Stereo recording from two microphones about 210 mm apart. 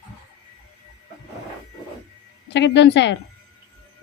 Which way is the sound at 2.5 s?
55° left (ahead or behind).